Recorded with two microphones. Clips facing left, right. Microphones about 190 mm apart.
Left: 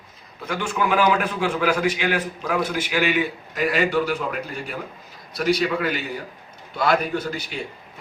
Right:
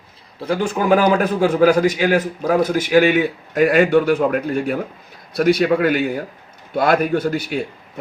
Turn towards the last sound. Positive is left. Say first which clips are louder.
# right 8 dB
turn(degrees=-55)  # may be behind; listen again after turning